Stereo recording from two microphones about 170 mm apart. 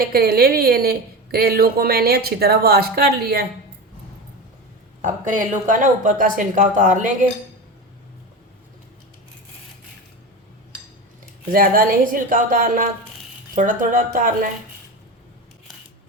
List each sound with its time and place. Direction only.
0.0 s a woman's voice: 65° right (ahead or behind)
5.0 s speech: 50° right (ahead or behind)
11.5 s speech: 55° right (ahead or behind)